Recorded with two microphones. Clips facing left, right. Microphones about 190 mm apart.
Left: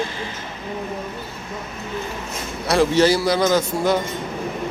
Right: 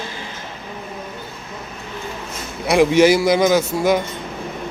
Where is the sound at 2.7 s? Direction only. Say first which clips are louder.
Right 3 dB; 15° right (ahead or behind).